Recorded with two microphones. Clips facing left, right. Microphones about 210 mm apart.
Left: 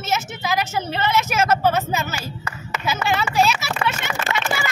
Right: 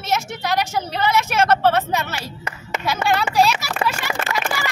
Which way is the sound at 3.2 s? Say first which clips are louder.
Right 2 dB; centre (ahead or behind).